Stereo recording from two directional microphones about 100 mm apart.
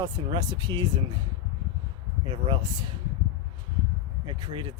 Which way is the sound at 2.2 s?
55° right (ahead or behind).